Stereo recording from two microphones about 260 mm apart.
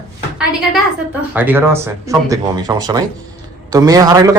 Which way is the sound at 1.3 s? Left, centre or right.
Centre.